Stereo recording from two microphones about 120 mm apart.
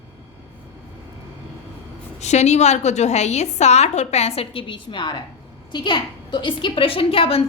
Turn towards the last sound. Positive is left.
turn(degrees=50)  # may be behind; listen again after turning